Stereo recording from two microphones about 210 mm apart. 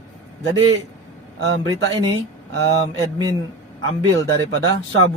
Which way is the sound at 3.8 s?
85° right.